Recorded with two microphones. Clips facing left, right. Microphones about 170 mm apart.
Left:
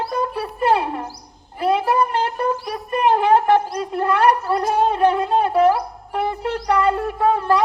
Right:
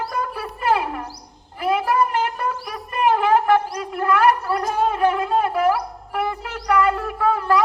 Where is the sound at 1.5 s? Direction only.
30° left (ahead or behind).